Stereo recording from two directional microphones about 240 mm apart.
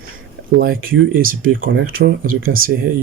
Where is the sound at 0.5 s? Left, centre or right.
Right.